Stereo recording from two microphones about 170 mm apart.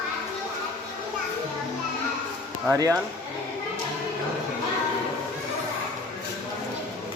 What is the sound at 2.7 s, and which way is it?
Speech, 15° right (ahead or behind).